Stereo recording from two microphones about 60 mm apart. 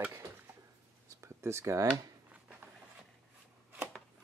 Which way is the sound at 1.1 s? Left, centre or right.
Right.